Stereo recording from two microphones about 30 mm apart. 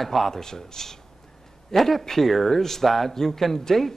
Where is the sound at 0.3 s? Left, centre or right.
Centre.